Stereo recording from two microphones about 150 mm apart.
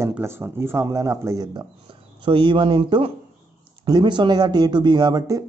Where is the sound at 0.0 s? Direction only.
15° right (ahead or behind).